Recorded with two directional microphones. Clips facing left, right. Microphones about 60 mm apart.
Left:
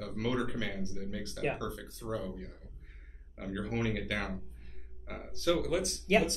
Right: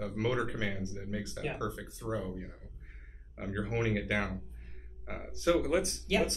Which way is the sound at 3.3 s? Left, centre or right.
Centre.